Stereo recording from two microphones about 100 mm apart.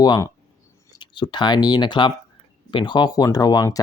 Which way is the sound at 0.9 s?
50° left (ahead or behind).